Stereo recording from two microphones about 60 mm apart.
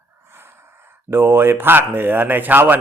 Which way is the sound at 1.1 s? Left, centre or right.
Right.